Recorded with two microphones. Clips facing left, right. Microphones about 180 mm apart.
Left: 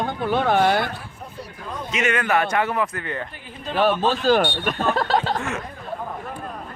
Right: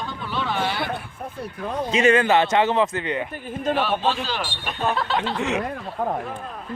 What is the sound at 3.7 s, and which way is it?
Speech, 45° left (ahead or behind).